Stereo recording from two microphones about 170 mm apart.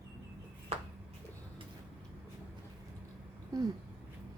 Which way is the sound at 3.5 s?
20° right (ahead or behind).